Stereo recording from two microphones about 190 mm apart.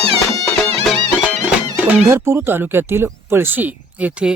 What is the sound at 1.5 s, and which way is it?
Speech, 10° right (ahead or behind).